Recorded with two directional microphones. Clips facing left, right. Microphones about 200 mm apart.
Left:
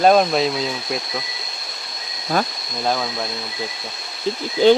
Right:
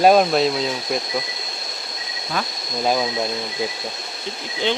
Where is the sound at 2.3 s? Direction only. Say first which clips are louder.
Left 5 dB; 40° left (ahead or behind).